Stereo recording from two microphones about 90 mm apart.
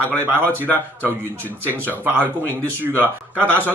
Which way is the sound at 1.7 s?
25° right (ahead or behind).